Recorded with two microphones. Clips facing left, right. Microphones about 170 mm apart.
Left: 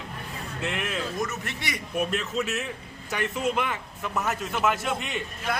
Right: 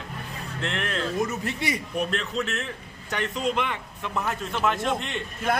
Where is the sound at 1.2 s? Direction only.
30° right (ahead or behind).